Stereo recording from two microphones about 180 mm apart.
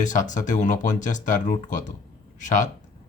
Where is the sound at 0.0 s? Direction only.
45° left (ahead or behind).